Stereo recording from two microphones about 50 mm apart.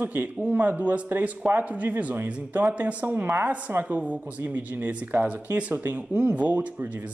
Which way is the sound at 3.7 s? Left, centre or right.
Right.